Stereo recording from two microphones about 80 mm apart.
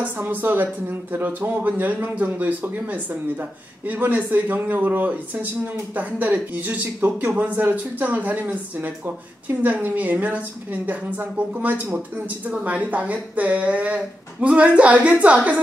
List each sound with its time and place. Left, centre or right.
0.0 s speech: right